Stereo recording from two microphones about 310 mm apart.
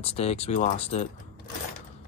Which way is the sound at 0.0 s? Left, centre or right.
Centre.